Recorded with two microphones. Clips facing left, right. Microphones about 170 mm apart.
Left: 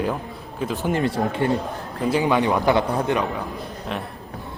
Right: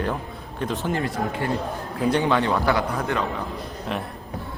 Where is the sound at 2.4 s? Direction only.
15° left (ahead or behind).